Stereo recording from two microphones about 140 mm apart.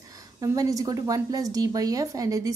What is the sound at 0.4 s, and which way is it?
A woman's voice, 25° right (ahead or behind).